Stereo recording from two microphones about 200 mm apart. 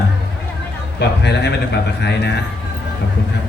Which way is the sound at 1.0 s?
55° left (ahead or behind).